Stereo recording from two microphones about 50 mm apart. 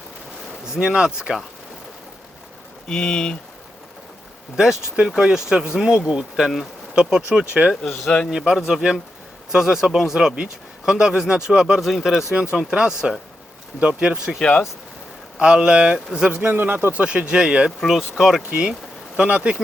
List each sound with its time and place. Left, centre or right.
0.6 s speech: centre
2.8 s speech: centre
4.5 s speech: centre
11.8 s speech: centre
12.3 s speech: right
15.4 s speech: centre
16.4 s speech: right
16.9 s speech: right
18.2 s speech: centre
18.4 s speech: right